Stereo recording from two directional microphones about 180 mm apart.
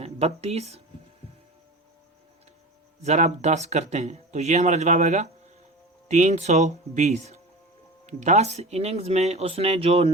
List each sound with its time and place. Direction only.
0.0 s speech: 35° right (ahead or behind)
3.0 s speech: 40° right (ahead or behind)